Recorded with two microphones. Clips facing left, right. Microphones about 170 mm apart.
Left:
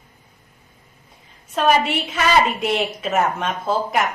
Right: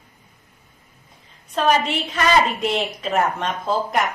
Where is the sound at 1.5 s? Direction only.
5° left (ahead or behind).